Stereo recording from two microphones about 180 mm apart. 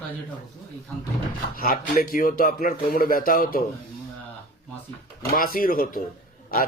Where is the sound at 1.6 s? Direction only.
55° left (ahead or behind).